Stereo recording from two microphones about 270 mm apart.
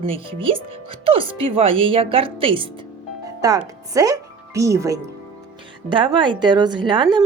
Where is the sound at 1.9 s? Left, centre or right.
Centre.